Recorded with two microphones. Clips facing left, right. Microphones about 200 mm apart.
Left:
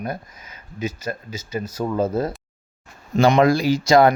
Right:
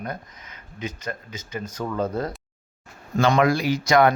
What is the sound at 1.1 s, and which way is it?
Speech, 20° left (ahead or behind).